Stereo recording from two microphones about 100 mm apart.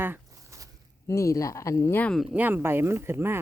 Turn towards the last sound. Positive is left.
turn(degrees=-25)  # may be behind; listen again after turning